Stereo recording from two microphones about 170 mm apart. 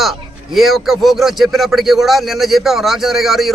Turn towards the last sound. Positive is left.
turn(degrees=0)  # may be behind; listen again after turning